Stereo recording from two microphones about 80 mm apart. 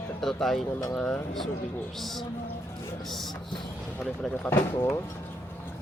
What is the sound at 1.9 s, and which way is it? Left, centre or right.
Speech, centre.